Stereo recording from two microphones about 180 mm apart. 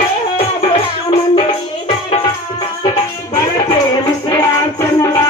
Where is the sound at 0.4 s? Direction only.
30° left (ahead or behind).